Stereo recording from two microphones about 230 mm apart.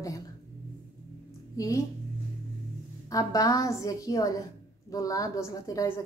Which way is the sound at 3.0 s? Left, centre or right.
Centre.